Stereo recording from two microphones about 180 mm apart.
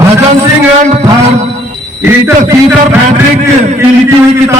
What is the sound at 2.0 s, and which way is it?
Speech, 10° right (ahead or behind).